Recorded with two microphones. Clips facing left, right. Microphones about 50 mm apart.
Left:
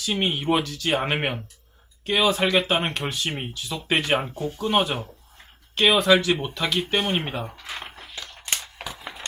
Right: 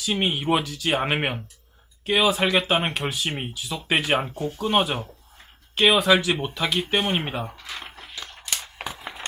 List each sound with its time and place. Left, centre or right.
0.0 s speech: centre
7.6 s speech: centre
8.2 s a sound: centre